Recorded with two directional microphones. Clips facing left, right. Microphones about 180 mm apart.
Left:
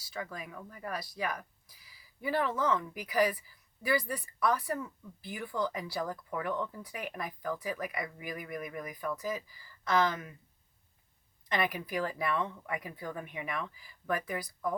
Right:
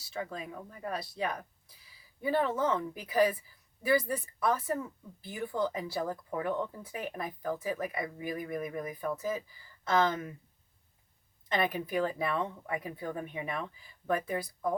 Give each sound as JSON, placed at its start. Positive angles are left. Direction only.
{"t": 0.1, "sound": "speech", "side_deg": -25}
{"t": 11.6, "sound": "speech", "side_deg": -25}